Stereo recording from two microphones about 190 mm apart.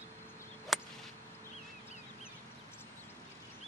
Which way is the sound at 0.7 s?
Centre (ahead or behind).